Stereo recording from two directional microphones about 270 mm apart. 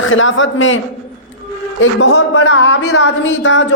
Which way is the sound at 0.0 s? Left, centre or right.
Left.